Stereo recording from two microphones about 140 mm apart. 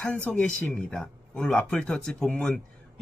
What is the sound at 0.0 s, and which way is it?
Speech, 10° left (ahead or behind).